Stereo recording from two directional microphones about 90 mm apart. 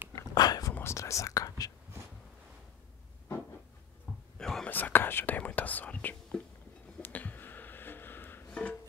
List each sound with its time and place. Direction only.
0.3 s whispering: 50° left (ahead or behind)
0.7 s whispering: 30° left (ahead or behind)
4.4 s whispering: 5° left (ahead or behind)
4.6 s whispering: 20° left (ahead or behind)
7.0 s a sound: 20° left (ahead or behind)
8.5 s music: 15° left (ahead or behind)